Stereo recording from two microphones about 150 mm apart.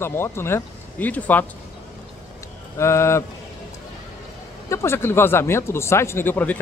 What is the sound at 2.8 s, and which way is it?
Speech, 20° left (ahead or behind).